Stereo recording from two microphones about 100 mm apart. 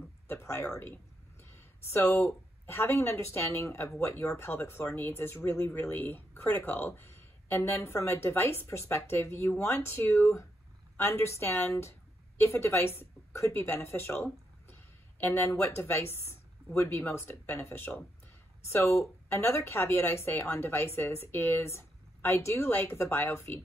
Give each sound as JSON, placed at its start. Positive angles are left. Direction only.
{"t": 0.3, "sound": "speech", "side_deg": 25}
{"t": 1.4, "sound": "a sound", "side_deg": 25}
{"t": 2.6, "sound": "a woman's voice", "side_deg": 25}